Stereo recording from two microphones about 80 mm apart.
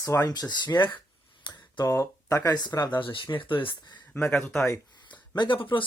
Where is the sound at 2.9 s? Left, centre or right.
Left.